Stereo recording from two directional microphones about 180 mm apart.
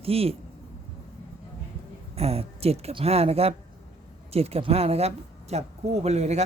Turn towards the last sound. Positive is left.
turn(degrees=-40)  # may be behind; listen again after turning